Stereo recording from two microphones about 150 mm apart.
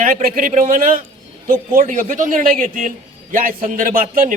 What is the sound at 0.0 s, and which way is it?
A man's voice, 65° right (ahead or behind).